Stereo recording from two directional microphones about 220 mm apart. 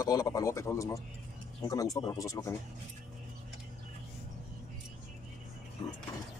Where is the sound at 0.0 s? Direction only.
15° left (ahead or behind).